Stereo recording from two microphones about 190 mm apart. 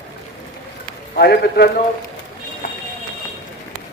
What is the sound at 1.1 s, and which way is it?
Speech, 55° left (ahead or behind).